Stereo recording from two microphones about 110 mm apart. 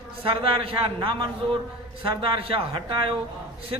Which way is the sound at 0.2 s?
55° right (ahead or behind).